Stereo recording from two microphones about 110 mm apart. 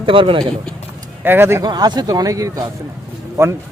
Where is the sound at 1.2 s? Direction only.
20° right (ahead or behind).